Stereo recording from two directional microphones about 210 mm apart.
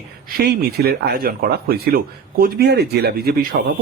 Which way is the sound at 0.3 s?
45° right (ahead or behind).